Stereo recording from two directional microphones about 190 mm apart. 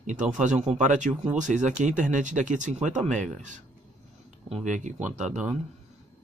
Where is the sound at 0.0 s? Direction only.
40° right (ahead or behind).